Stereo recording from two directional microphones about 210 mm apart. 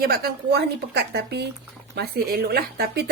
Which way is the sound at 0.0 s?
45° right (ahead or behind).